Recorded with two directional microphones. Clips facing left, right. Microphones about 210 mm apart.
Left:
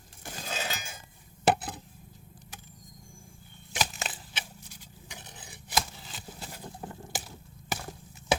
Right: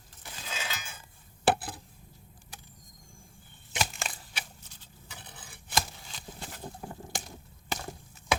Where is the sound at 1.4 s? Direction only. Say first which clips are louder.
Left 1 dB; 20° left (ahead or behind).